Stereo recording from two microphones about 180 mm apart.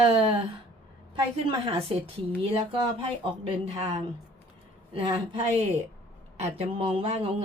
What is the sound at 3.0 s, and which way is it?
Speech, 30° right (ahead or behind).